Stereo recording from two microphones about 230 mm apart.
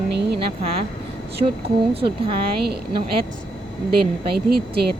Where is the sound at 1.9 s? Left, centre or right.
Right.